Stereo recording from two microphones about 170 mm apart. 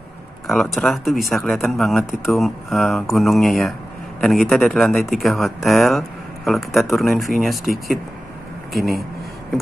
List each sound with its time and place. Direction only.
0.5 s speech: centre (ahead or behind)